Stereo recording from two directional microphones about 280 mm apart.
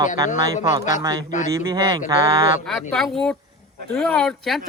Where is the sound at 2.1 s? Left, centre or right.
Centre.